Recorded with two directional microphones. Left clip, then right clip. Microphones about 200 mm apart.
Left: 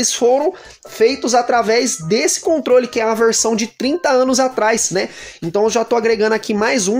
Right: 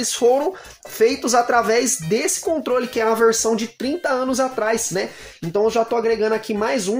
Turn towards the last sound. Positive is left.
turn(degrees=50)  # may be behind; listen again after turning